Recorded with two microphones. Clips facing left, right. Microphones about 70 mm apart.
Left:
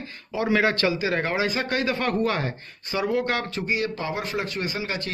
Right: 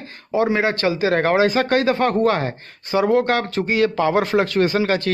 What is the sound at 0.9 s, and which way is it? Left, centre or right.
Speech, right.